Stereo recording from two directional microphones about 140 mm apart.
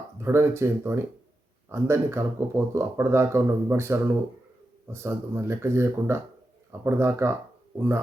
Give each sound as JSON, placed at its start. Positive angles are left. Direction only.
{"t": 0.2, "sound": "speech", "side_deg": -20}